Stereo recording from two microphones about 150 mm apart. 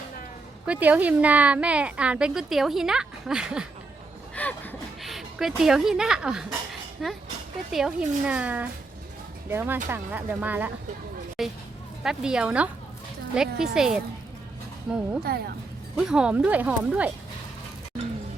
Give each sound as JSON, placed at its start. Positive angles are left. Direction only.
{"t": 0.6, "sound": "a woman's voice", "side_deg": -10}
{"t": 4.4, "sound": "a sound", "side_deg": 10}
{"t": 5.0, "sound": "a woman's voice", "side_deg": 0}
{"t": 15.2, "sound": "speech", "side_deg": -90}
{"t": 16.0, "sound": "a woman's voice", "side_deg": -5}